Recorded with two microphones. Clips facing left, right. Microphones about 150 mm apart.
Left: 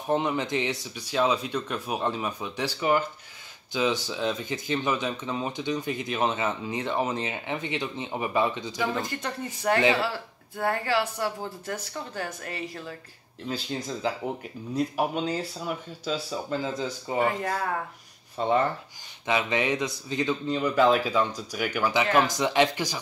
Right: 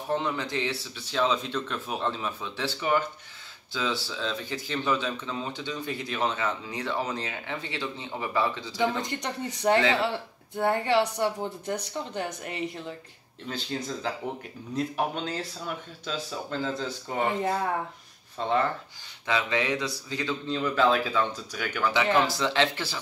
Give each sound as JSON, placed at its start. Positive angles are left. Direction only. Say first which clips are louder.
{"t": 0.1, "sound": "speech", "louder": "left 3 dB", "side_deg": 20}
{"t": 8.7, "sound": "speech", "louder": "right 1 dB", "side_deg": -20}
{"t": 15.0, "sound": "speech", "louder": "left 3 dB", "side_deg": 10}
{"t": 17.4, "sound": "speech", "louder": "right 2 dB", "side_deg": -15}
{"t": 18.4, "sound": "speech", "louder": "left 2 dB", "side_deg": 15}